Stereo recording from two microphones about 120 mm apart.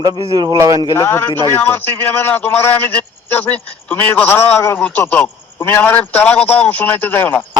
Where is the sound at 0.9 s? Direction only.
20° left (ahead or behind).